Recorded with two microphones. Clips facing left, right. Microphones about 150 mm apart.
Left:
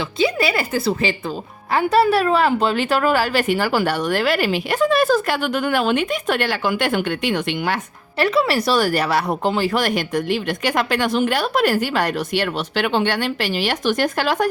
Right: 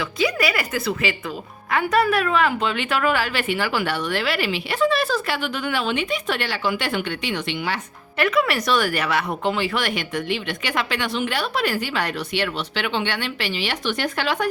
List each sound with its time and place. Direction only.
0.2 s a woman's voice: 30° left (ahead or behind); by 7.8 s 50° left (ahead or behind)
8.2 s speech: 30° left (ahead or behind)